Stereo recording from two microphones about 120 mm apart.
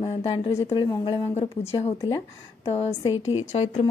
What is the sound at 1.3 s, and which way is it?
Speech, 60° left (ahead or behind).